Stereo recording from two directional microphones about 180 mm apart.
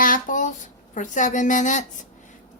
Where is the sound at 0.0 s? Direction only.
50° left (ahead or behind).